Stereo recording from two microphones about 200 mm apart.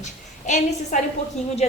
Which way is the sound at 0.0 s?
35° left (ahead or behind).